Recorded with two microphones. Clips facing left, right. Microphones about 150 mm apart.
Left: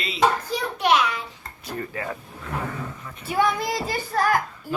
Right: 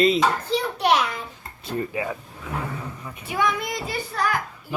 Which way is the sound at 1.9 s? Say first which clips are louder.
Right 3 dB; 10° right (ahead or behind).